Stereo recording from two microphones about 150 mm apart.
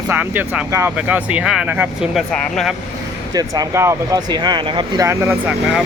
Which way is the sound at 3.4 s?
20° right (ahead or behind).